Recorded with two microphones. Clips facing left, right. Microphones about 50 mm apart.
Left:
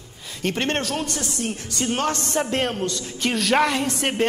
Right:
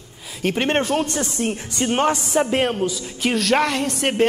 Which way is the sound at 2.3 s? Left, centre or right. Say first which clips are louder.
Right 4 dB; centre.